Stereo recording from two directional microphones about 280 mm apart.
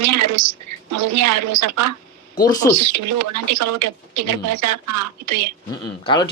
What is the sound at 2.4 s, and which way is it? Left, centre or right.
Speech, centre.